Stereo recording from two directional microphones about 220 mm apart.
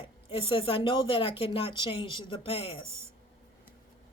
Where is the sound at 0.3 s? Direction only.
25° left (ahead or behind).